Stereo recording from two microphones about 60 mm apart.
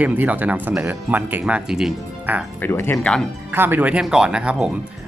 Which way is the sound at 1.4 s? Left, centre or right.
Centre.